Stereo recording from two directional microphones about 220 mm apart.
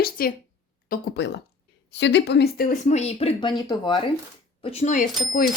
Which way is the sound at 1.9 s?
50° left (ahead or behind).